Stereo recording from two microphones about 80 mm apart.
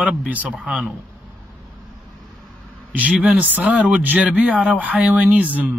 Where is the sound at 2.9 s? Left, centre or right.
Centre.